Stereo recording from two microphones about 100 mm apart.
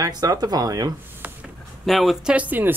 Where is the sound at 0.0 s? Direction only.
40° right (ahead or behind).